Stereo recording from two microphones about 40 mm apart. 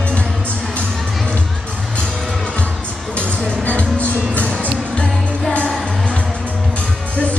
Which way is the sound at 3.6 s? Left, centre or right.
Left.